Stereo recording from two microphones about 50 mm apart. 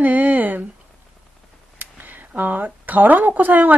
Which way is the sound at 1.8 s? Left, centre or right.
Right.